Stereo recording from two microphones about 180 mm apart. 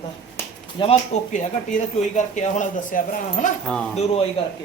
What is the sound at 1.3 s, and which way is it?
A man's voice, 45° left (ahead or behind).